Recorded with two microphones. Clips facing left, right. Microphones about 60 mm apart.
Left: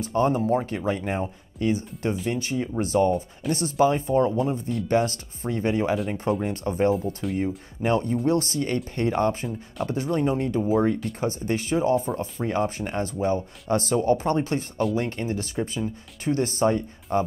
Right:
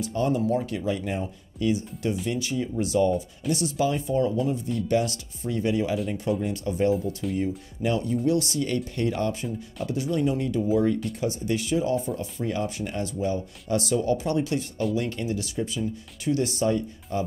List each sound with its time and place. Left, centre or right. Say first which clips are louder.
0.0 s speech: left 2 dB; left